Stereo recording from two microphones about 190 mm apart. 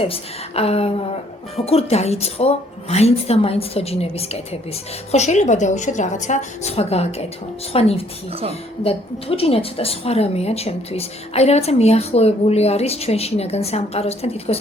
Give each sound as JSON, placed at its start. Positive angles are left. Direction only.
{"t": 0.0, "sound": "a woman's voice", "side_deg": 30}